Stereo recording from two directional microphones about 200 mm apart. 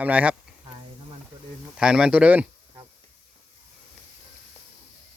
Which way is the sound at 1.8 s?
5° right (ahead or behind).